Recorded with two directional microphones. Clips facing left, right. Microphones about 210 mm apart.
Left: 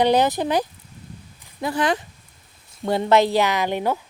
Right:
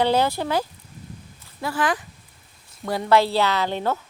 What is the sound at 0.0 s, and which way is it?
A woman's voice, 15° left (ahead or behind).